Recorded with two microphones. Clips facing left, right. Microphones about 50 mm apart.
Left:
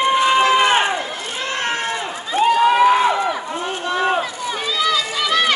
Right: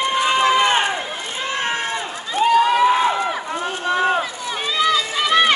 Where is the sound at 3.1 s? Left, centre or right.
Centre.